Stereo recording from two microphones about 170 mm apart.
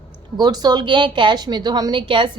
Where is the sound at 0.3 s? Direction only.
25° right (ahead or behind).